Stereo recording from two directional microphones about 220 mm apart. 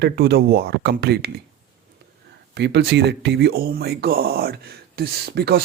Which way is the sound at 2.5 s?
50° right (ahead or behind).